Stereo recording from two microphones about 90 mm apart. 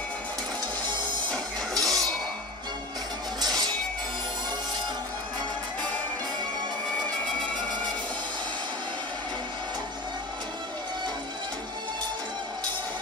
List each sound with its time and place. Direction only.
1.3 s music: 5° left (ahead or behind)
3.3 s music: 45° right (ahead or behind)